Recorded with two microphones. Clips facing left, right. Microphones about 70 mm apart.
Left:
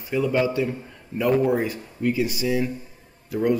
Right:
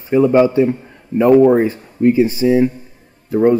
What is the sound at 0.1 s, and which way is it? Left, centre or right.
Speech, right.